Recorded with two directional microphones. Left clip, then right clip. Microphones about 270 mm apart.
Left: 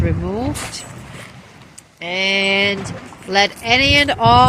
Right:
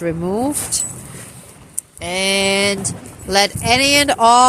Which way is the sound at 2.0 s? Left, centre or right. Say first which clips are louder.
Even; centre.